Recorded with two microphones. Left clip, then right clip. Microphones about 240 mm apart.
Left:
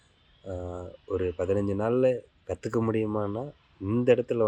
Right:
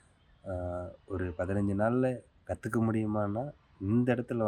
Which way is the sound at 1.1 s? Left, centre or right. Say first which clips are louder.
Left 7 dB; centre.